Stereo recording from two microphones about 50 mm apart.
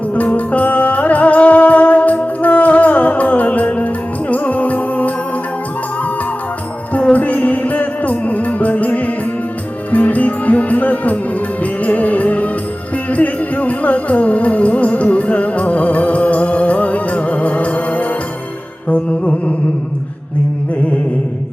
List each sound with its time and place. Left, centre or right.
0.1 s music: left
7.0 s music: left